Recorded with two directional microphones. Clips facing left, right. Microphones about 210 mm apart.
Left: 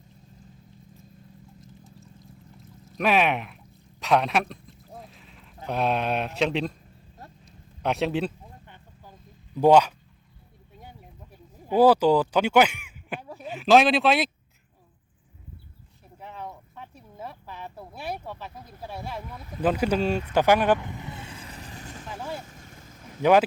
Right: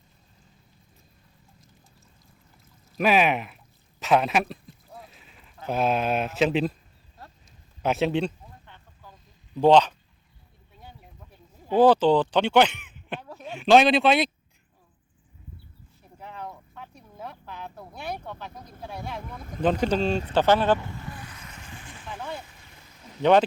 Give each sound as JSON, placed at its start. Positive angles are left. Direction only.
{"t": 2.9, "sound": "speech", "side_deg": 0}
{"t": 4.0, "sound": "a sound", "side_deg": -5}
{"t": 5.6, "sound": "speech", "side_deg": -5}
{"t": 7.4, "sound": "a sound", "side_deg": 0}
{"t": 9.6, "sound": "speech", "side_deg": 10}
{"t": 10.8, "sound": "a sound", "side_deg": 10}
{"t": 16.1, "sound": "speech", "side_deg": 0}
{"t": 19.4, "sound": "speech", "side_deg": -50}
{"t": 19.6, "sound": "speech", "side_deg": 10}
{"t": 20.8, "sound": "vehicle", "side_deg": 20}